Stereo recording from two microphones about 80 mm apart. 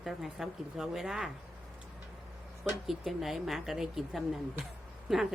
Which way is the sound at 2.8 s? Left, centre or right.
Centre.